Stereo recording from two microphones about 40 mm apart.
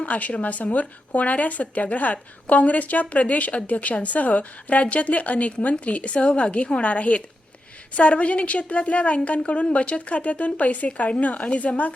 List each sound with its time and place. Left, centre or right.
0.0 s speech: left